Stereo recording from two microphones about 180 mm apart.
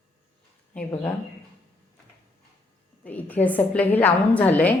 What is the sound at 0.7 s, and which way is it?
Speech, 5° left (ahead or behind).